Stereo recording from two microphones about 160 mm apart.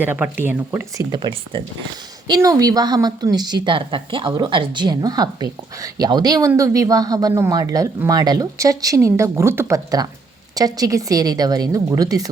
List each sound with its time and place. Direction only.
0.0 s speech: 10° right (ahead or behind)
1.1 s a woman's voice: 30° right (ahead or behind)